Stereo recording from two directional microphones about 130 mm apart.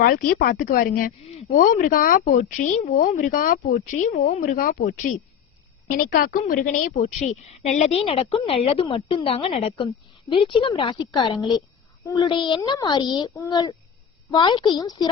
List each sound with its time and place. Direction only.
0.1 s speech: 90° left
1.2 s a woman's voice: 50° left (ahead or behind)
1.5 s speech: 90° left
6.9 s speech: 55° left (ahead or behind)
7.9 s a woman's voice: 50° left (ahead or behind); by 15.1 s 35° left (ahead or behind)